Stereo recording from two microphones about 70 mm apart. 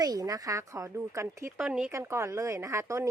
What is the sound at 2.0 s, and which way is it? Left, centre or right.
Speech, right.